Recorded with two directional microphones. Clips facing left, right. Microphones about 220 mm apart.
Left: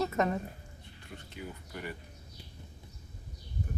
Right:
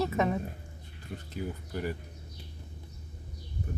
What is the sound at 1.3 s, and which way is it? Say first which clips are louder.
Speech: right 7 dB; 40° right (ahead or behind).